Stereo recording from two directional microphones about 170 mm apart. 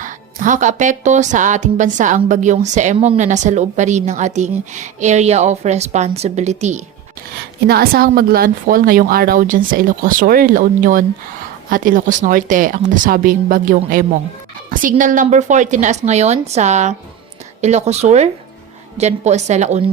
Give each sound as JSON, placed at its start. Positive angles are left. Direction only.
{"t": 0.0, "sound": "speech", "side_deg": -50}
{"t": 7.7, "sound": "a woman's voice", "side_deg": -65}